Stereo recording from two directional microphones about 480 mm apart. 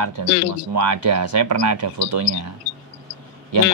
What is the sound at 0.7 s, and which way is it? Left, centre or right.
Speech, right.